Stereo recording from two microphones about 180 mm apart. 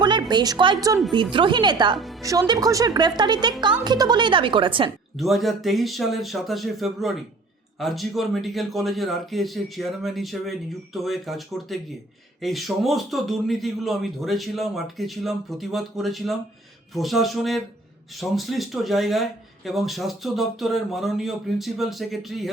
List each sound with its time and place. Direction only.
0.0 s a woman's voice: 25° right (ahead or behind)
5.1 s speech: centre (ahead or behind)